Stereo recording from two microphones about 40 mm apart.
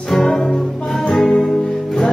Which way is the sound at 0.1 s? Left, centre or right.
Centre.